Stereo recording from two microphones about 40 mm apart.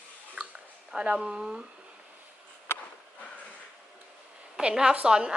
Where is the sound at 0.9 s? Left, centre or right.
Right.